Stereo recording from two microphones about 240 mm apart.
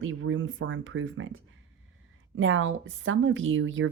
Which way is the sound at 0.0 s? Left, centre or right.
Right.